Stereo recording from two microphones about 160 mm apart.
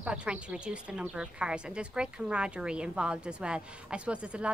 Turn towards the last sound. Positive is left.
turn(degrees=-5)  # may be behind; listen again after turning